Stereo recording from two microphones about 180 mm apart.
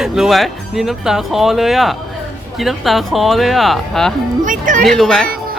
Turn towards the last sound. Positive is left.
turn(degrees=-55)  # may be behind; listen again after turning